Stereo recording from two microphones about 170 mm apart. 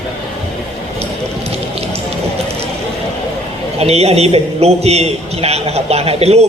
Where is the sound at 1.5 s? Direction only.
35° right (ahead or behind).